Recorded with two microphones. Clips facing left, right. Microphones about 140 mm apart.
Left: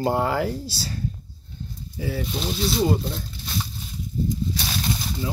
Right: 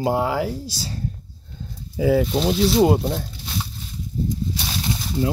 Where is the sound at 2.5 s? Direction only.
70° right (ahead or behind).